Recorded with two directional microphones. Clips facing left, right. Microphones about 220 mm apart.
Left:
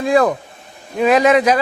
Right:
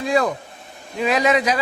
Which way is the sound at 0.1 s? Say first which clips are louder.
Left 5 dB; 55° left (ahead or behind).